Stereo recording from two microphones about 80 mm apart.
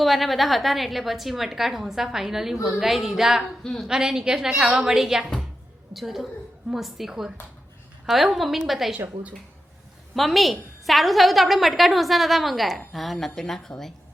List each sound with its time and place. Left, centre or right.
0.0 s a woman's voice: centre
3.6 s a woman's voice: centre
3.8 s a woman's voice: centre
10.2 s a woman's voice: centre